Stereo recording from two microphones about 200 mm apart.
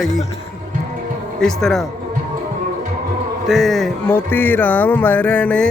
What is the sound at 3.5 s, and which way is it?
Speech, centre (ahead or behind).